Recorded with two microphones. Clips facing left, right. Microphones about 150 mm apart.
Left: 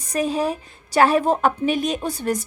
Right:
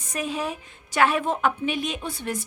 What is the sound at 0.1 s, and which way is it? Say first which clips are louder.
A woman's voice: left 7 dB; 35° left (ahead or behind).